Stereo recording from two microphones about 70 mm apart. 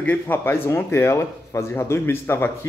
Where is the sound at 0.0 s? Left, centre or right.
Left.